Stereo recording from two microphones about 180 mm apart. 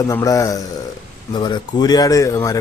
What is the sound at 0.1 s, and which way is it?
A man's voice, 20° left (ahead or behind).